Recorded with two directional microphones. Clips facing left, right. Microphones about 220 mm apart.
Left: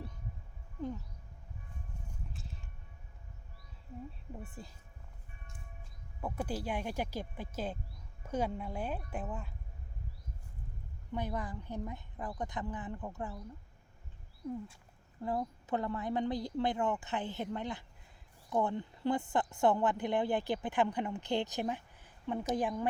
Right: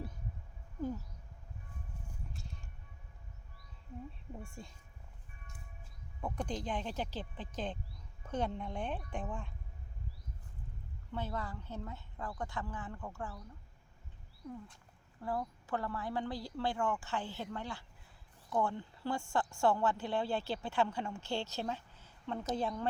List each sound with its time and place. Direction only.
2.3 s music: centre (ahead or behind)
4.4 s speech: 5° left (ahead or behind)
6.2 s a woman's voice: 5° left (ahead or behind)
11.1 s a woman's voice: 15° left (ahead or behind)
15.2 s a woman's voice: 20° left (ahead or behind)